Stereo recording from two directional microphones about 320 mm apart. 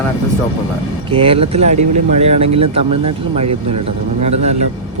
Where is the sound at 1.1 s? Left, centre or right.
Centre.